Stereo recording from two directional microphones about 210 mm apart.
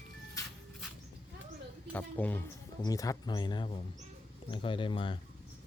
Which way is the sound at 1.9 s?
5° left (ahead or behind).